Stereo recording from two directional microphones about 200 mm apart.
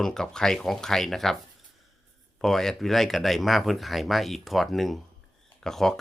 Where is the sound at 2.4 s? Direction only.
Centre (ahead or behind).